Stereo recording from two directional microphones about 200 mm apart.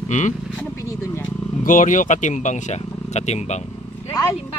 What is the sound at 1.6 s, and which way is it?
Speech, 40° left (ahead or behind).